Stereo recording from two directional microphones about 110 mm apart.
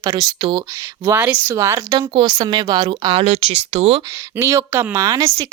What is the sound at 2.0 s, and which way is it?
Speech, 45° right (ahead or behind).